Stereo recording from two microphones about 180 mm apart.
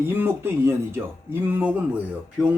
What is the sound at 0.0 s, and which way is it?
Speech, 10° right (ahead or behind).